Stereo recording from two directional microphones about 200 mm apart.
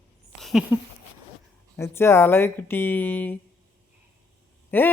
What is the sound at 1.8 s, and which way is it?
Speech, 10° left (ahead or behind).